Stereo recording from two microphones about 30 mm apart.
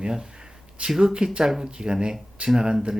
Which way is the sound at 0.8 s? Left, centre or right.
Right.